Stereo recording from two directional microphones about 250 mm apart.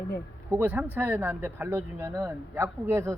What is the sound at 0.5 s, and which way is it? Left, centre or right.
Speech, centre.